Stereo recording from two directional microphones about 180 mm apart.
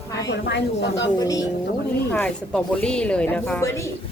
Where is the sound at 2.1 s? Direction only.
10° left (ahead or behind).